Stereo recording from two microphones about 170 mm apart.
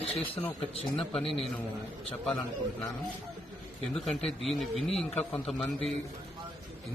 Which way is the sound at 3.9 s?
Centre (ahead or behind).